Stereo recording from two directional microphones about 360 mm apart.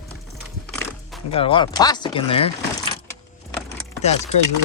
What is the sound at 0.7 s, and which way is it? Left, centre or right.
Music, centre.